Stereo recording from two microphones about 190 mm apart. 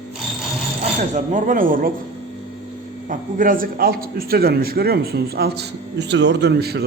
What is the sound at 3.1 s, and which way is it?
Speech, 45° right (ahead or behind).